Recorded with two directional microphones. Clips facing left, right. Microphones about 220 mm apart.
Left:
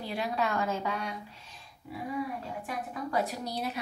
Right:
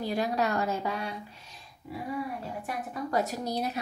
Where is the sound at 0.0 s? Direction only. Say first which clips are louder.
Right 3 dB; 40° right (ahead or behind).